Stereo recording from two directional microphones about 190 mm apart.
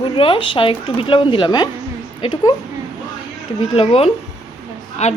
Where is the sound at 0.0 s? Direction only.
25° left (ahead or behind).